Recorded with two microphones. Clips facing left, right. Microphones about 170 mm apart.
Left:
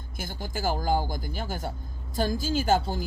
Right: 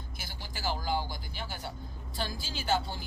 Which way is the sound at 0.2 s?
45° left (ahead or behind).